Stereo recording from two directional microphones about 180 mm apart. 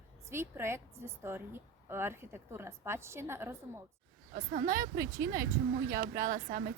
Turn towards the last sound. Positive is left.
turn(degrees=-50)  # may be behind; listen again after turning